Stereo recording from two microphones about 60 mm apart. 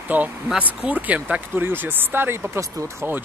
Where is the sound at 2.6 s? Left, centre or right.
Right.